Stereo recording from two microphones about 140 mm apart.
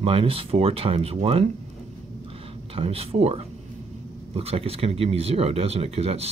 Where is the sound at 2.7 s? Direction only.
45° right (ahead or behind).